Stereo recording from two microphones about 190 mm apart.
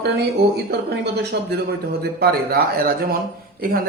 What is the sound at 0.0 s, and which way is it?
A man's voice, 60° right (ahead or behind).